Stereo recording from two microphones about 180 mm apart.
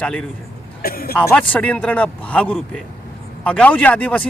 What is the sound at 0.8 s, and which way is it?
Speech, 55° left (ahead or behind).